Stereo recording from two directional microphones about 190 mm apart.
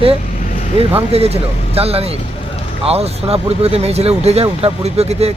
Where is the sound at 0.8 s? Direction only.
30° right (ahead or behind).